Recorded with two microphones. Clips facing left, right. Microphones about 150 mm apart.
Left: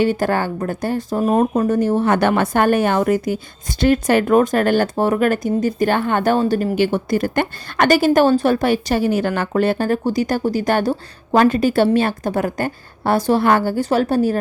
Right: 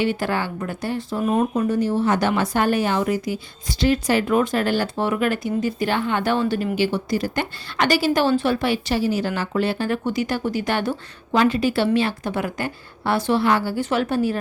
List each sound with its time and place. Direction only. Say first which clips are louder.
0.0 s speech: left 5 dB; 45° left (ahead or behind)